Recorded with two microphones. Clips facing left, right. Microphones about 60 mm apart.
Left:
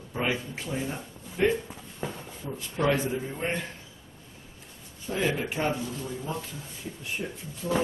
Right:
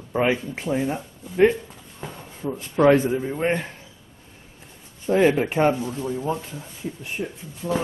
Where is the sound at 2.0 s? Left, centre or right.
Centre.